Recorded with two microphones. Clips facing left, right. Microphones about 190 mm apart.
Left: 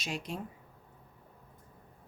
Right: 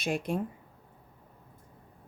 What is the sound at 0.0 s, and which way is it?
Speech, 55° right (ahead or behind).